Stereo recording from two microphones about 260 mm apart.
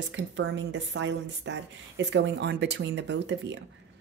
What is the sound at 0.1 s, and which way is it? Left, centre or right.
Speech, right.